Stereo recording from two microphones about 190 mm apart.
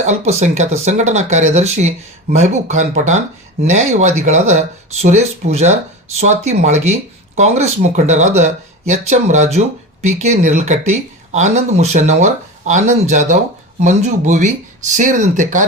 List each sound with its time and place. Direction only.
0.0 s speech: 35° right (ahead or behind)